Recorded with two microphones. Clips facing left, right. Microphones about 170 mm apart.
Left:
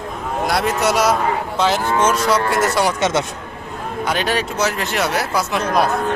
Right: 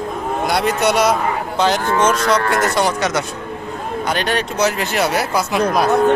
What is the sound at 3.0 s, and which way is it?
Speech, 25° left (ahead or behind).